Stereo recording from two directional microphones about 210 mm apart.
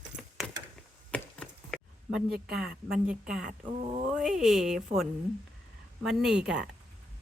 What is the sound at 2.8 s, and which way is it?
Speech, 5° right (ahead or behind).